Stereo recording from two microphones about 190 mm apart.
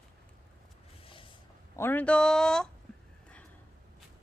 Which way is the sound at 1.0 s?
25° left (ahead or behind).